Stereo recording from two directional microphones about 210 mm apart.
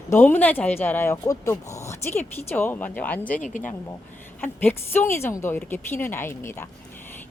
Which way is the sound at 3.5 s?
40° left (ahead or behind).